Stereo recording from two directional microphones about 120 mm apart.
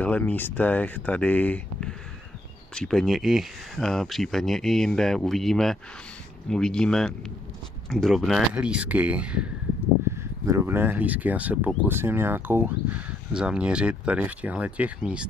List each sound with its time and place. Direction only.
0.0 s speech: 10° left (ahead or behind); by 9.5 s 10° right (ahead or behind)
10.0 s speech: 25° right (ahead or behind)